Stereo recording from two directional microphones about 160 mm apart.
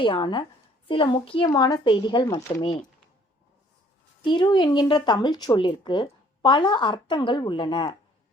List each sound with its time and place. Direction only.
0.0 s a child's voice: 30° left (ahead or behind)
4.2 s speech: 30° left (ahead or behind)